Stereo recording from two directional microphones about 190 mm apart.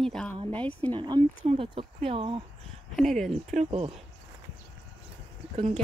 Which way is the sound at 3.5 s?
30° right (ahead or behind).